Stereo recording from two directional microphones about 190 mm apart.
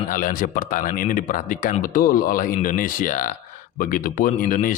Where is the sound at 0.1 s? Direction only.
45° left (ahead or behind).